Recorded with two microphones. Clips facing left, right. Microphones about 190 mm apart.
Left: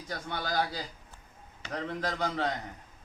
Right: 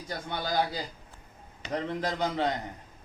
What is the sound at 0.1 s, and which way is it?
A man's voice, 15° right (ahead or behind).